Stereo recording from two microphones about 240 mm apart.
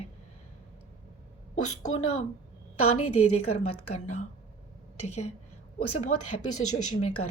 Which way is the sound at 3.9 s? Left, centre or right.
Left.